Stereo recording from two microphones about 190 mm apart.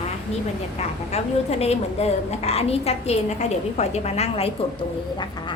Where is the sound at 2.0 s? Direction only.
35° left (ahead or behind).